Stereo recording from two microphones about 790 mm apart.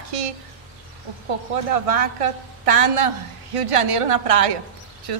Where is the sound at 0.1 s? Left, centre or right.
Right.